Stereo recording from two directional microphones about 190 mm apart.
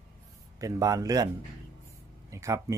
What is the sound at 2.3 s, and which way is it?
Speech, 15° right (ahead or behind).